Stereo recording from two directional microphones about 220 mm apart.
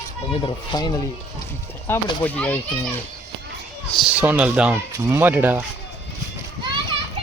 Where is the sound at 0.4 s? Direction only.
20° left (ahead or behind).